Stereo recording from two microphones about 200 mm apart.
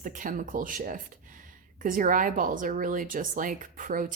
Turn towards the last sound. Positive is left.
turn(degrees=-40)  # may be behind; listen again after turning